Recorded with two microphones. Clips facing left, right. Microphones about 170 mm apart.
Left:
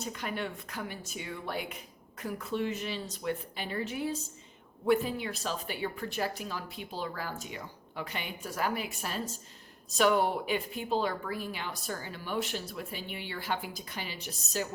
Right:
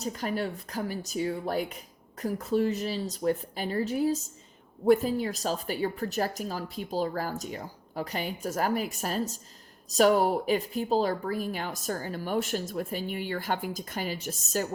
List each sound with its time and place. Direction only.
0.0 s speech: 40° right (ahead or behind)